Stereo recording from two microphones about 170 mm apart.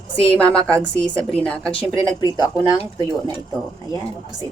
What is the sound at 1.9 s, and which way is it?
Speech, 20° right (ahead or behind).